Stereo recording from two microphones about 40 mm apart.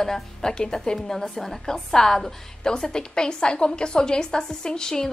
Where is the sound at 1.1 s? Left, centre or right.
Centre.